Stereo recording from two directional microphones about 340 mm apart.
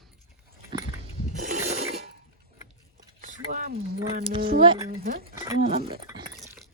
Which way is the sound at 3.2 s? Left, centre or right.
Right.